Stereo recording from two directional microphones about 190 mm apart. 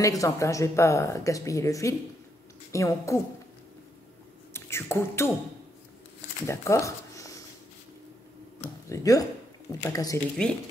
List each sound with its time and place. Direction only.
0.2 s a woman's voice: 15° left (ahead or behind)
4.6 s speech: 15° left (ahead or behind)
6.4 s speech: 15° left (ahead or behind)
8.8 s speech: 15° left (ahead or behind)
10.4 s speech: 5° left (ahead or behind)